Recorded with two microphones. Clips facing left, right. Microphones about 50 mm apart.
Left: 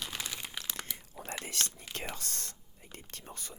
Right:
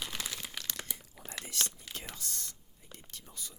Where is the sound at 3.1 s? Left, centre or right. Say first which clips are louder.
Left 2 dB; left.